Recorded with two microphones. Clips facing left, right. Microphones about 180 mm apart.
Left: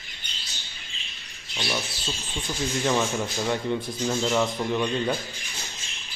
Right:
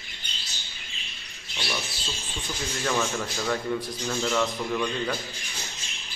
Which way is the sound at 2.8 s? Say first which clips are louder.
Left 2 dB; 20° left (ahead or behind).